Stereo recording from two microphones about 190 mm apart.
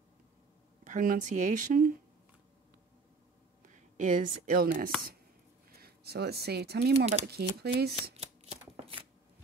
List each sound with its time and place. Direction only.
0.8 s speech: 45° right (ahead or behind)
3.6 s speech: 40° right (ahead or behind); by 7.9 s 55° right (ahead or behind)
8.2 s shuffling cards: 30° right (ahead or behind)